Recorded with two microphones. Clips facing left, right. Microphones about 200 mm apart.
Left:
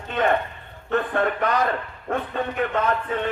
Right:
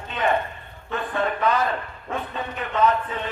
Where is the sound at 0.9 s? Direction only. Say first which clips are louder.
Left 3 dB; 60° left (ahead or behind).